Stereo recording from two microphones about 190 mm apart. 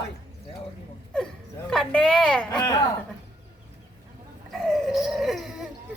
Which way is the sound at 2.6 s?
20° left (ahead or behind).